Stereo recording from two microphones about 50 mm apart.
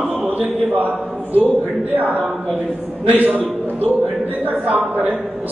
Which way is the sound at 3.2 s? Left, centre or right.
Right.